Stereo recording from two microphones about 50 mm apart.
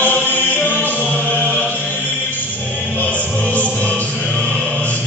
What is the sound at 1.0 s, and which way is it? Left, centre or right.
Music, left.